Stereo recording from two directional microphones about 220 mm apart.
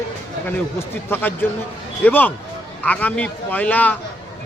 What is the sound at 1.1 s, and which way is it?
Speech, 10° left (ahead or behind).